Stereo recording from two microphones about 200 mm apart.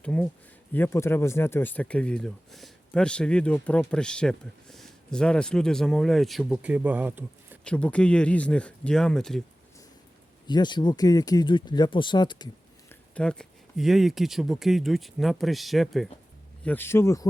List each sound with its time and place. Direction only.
0.0 s speech: 5° left (ahead or behind)
7.6 s speech: 5° left (ahead or behind)
10.4 s speech: 20° left (ahead or behind)
12.9 s speech: 5° left (ahead or behind)
16.6 s speech: 10° left (ahead or behind)